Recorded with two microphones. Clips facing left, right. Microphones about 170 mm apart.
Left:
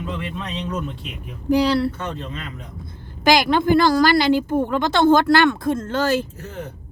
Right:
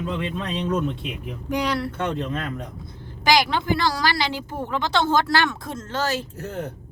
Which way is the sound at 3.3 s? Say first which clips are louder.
Left 4 dB; 50° left (ahead or behind).